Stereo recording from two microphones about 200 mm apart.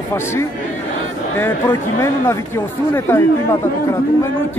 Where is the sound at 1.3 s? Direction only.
10° left (ahead or behind).